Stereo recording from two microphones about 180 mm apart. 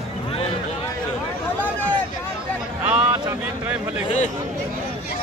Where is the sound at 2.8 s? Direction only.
5° right (ahead or behind).